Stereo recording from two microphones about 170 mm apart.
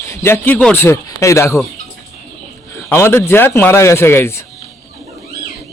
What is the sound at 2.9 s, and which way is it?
A man's voice, 15° left (ahead or behind).